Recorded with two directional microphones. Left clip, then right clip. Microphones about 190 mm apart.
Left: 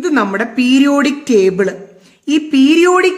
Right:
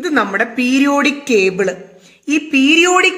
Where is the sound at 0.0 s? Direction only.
50° left (ahead or behind).